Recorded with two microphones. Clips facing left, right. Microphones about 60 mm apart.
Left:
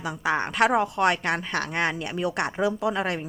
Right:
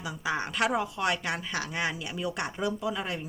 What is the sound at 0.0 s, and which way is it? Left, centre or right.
Speech, left.